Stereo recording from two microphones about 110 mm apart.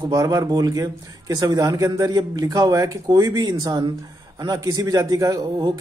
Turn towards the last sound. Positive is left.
turn(degrees=-35)  # may be behind; listen again after turning